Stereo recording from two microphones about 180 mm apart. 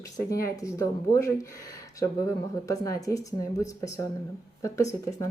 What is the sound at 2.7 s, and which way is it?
Speech, 20° left (ahead or behind).